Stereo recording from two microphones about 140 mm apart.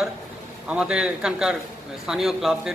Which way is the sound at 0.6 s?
5° right (ahead or behind).